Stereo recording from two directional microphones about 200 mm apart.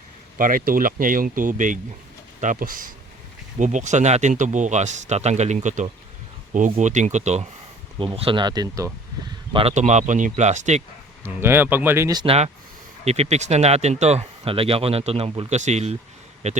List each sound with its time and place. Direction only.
0.3 s speech: 45° right (ahead or behind); by 8.9 s 15° right (ahead or behind)
9.5 s speech: 30° right (ahead or behind)
11.3 s speech: 10° right (ahead or behind)
12.2 s speech: 30° right (ahead or behind)